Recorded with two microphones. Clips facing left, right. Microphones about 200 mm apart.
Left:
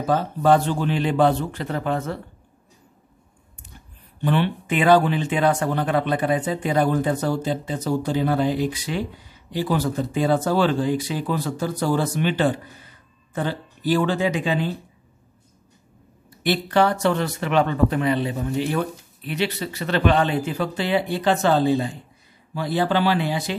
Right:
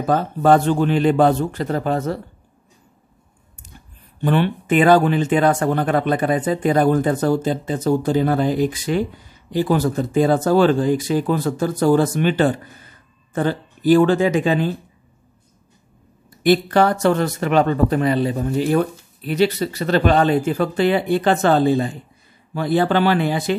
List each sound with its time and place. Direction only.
0.0 s speech: 50° right (ahead or behind)
4.2 s speech: 50° right (ahead or behind)
16.4 s speech: 45° right (ahead or behind)